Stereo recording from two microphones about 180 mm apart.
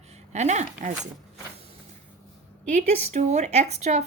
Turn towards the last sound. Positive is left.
turn(degrees=-40)  # may be behind; listen again after turning